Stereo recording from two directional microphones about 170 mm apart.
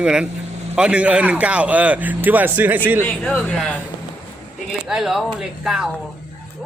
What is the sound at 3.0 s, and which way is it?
Speech, 5° left (ahead or behind).